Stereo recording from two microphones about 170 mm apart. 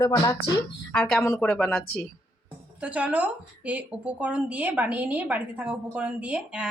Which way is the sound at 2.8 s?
5° right (ahead or behind).